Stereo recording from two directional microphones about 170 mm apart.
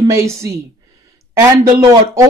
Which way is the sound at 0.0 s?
15° right (ahead or behind).